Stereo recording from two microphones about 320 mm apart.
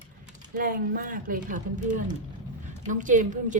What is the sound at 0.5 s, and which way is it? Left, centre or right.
A woman's voice, right.